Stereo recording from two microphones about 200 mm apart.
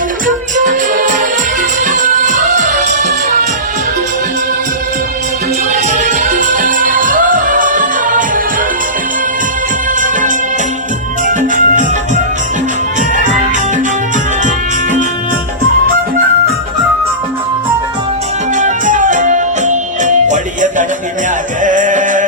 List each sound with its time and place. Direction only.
0.5 s music: 40° right (ahead or behind)
5.7 s music: 40° right (ahead or behind)
10.0 s music: 40° right (ahead or behind)
18.5 s music: 40° right (ahead or behind)